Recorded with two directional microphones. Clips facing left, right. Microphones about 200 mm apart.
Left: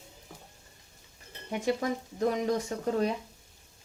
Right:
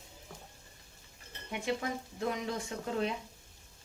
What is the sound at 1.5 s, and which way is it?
Speech, 40° left (ahead or behind).